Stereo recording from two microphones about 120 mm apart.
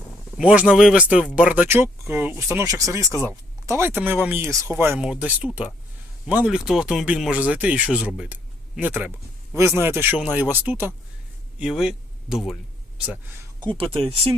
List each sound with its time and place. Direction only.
0.3 s a man's voice: 10° right (ahead or behind)
4.9 s speech: 10° right (ahead or behind)
11.6 s speech: 5° right (ahead or behind)
13.6 s speech: 45° right (ahead or behind)